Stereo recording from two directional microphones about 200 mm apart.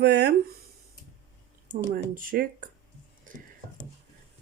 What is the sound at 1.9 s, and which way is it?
Speech, 45° right (ahead or behind).